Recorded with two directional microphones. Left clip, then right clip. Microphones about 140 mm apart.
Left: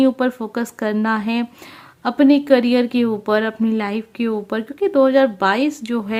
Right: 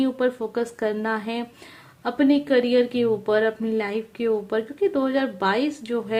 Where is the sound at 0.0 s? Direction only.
40° left (ahead or behind).